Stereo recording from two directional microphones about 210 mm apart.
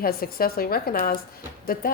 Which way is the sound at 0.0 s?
45° left (ahead or behind).